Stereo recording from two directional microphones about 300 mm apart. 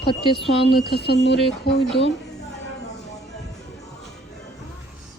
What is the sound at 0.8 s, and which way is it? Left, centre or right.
Speech, left.